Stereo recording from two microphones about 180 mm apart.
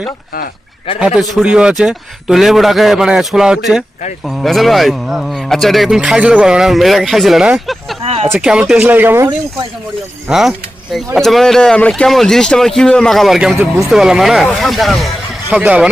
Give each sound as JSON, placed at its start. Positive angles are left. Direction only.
{"t": 0.9, "sound": "speech", "side_deg": -5}
{"t": 8.0, "sound": "speech", "side_deg": -35}
{"t": 8.3, "sound": "speech", "side_deg": -5}